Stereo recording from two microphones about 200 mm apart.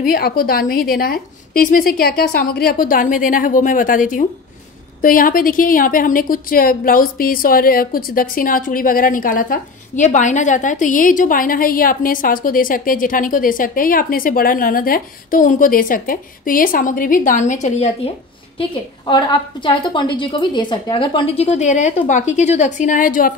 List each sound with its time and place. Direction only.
0.0 s a woman's voice: 45° left (ahead or behind)
18.6 s a woman's voice: 25° left (ahead or behind); by 23.3 s 40° left (ahead or behind)